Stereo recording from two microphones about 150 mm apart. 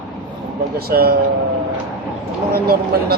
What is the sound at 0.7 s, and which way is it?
Speech, 90° right.